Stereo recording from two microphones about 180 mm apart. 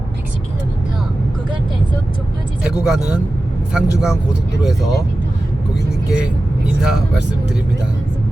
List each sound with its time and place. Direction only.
2.8 s speech: 5° right (ahead or behind)
6.1 s speech: 5° right (ahead or behind)